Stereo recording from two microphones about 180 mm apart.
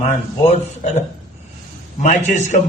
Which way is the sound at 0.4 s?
35° left (ahead or behind).